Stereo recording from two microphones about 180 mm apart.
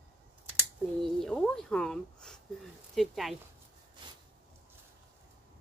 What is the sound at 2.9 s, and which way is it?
Speech, centre (ahead or behind).